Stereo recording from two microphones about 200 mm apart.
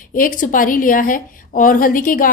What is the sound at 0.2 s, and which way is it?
A woman's voice, 40° left (ahead or behind).